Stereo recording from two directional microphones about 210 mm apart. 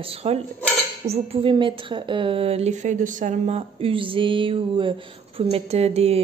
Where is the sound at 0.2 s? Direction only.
30° right (ahead or behind).